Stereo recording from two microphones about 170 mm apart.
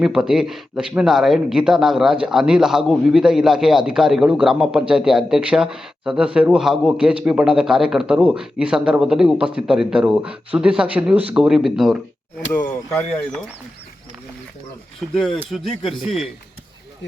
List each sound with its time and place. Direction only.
0.0 s speech: 5° right (ahead or behind)
12.5 s speech: 10° left (ahead or behind)
15.0 s speech: centre (ahead or behind)